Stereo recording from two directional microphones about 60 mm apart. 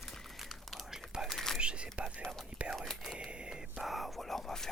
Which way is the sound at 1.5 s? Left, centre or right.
Centre.